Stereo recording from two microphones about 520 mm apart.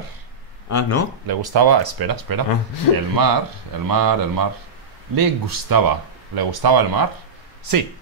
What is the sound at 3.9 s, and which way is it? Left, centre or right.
Speech, right.